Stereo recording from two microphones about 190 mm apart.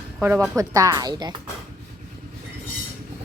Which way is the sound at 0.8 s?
20° right (ahead or behind).